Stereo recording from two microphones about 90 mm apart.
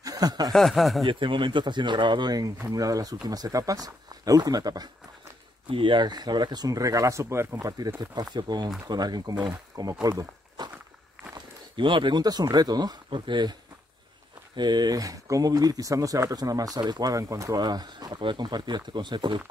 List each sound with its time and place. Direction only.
0.0 s snicker: 45° right (ahead or behind)
0.5 s speech: centre (ahead or behind)
1.0 s speech: 65° right (ahead or behind); by 4.8 s 45° right (ahead or behind)
5.7 s speech: 65° right (ahead or behind); by 7.4 s 35° right (ahead or behind)
7.6 s speech: 45° right (ahead or behind)
10.0 s walk: 45° right (ahead or behind)
11.3 s speech: 60° right (ahead or behind)